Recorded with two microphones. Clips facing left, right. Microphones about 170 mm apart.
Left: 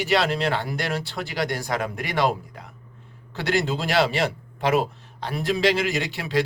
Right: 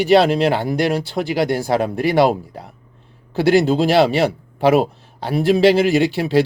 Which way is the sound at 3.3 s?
35° right (ahead or behind).